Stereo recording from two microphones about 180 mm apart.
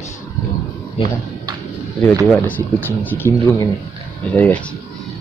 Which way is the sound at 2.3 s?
10° left (ahead or behind).